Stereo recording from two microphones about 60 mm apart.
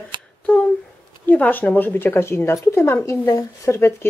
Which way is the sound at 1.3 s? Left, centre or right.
Left.